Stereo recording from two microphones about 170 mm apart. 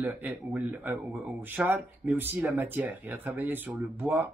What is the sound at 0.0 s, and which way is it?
Speech, 10° right (ahead or behind).